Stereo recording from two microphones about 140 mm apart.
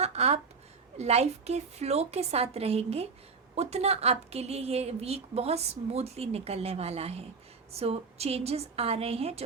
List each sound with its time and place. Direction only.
0.0 s a woman's voice: 50° right (ahead or behind)